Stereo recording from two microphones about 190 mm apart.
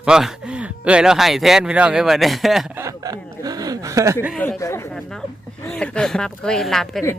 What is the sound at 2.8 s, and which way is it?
Chuckle, 20° right (ahead or behind).